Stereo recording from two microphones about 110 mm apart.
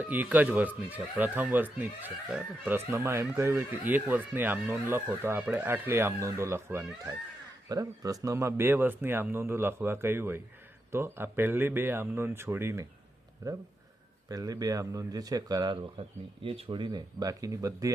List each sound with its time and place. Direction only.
0.0 s speech: 15° right (ahead or behind)
7.7 s speech: 35° right (ahead or behind)
16.4 s speech: 55° right (ahead or behind); by 17.9 s 30° right (ahead or behind)